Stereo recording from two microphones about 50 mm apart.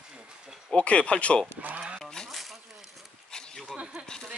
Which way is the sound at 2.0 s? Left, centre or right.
Centre.